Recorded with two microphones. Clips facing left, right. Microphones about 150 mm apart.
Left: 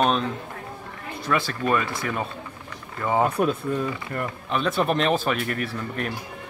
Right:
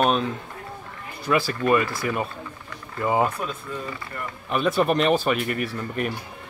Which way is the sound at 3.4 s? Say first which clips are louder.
Left 9 dB; 60° left (ahead or behind).